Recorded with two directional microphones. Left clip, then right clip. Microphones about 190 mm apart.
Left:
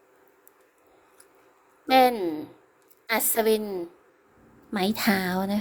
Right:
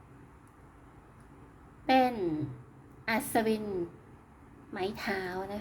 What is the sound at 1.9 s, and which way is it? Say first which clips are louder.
A woman's voice: left 7 dB; 40° left (ahead or behind).